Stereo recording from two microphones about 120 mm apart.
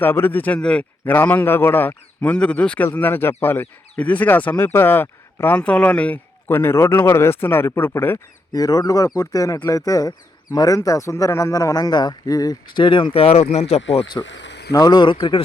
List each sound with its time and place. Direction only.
0.0 s a man's voice: 15° left (ahead or behind)
8.5 s speech: 30° left (ahead or behind)
13.1 s speech: 60° left (ahead or behind)
14.7 s speech: 30° left (ahead or behind)